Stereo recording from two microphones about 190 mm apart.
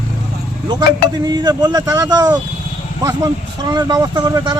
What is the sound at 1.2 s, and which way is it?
Speech, 20° right (ahead or behind).